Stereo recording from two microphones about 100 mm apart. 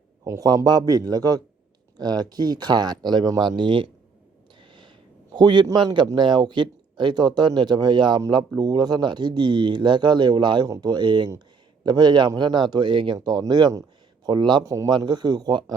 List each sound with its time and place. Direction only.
0.3 s speech: 35° right (ahead or behind); by 3.8 s 55° right (ahead or behind)
4.6 s a sound: 50° right (ahead or behind)
6.1 s speech: 50° right (ahead or behind)
13.1 s speech: 40° right (ahead or behind)